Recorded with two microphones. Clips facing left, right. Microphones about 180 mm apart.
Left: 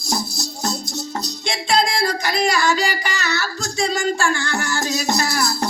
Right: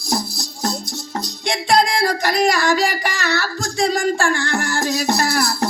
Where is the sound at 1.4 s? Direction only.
55° right (ahead or behind).